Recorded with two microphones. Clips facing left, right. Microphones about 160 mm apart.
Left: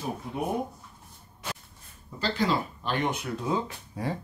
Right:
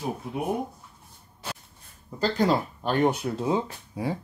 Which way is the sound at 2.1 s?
45° right (ahead or behind).